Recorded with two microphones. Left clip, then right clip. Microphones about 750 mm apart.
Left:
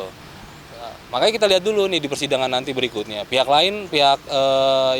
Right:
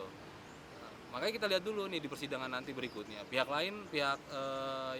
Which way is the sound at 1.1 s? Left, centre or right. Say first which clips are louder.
Left 18 dB; left.